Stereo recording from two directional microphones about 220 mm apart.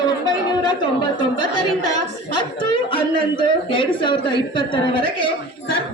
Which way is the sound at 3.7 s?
20° left (ahead or behind).